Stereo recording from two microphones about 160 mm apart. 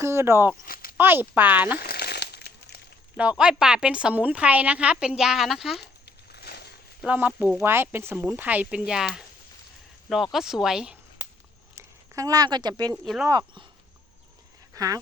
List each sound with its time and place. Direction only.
0.0 s a woman's voice: 15° right (ahead or behind)
0.6 s a sound: 65° left (ahead or behind)
0.9 s a woman's voice: 15° right (ahead or behind)
1.8 s a sound: 80° left
3.2 s a woman's voice: 5° right (ahead or behind)
6.1 s a sound: 90° left
7.0 s a woman's voice: 10° right (ahead or behind)
10.3 s speech: centre (ahead or behind)
11.7 s speech: 20° right (ahead or behind)
14.8 s speech: 20° right (ahead or behind)